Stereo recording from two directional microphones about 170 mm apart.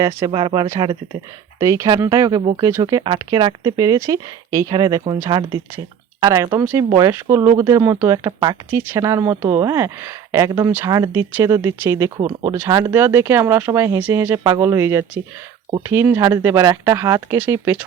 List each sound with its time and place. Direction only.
0.3 s speech: 30° right (ahead or behind); by 17.8 s 10° right (ahead or behind)